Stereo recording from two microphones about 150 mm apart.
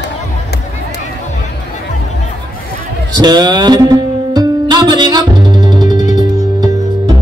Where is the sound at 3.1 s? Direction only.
25° right (ahead or behind).